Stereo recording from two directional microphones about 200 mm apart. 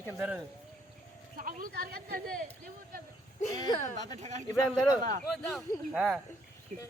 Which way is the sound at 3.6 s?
20° left (ahead or behind).